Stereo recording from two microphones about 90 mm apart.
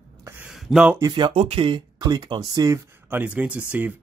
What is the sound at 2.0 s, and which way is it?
Speech, 50° right (ahead or behind).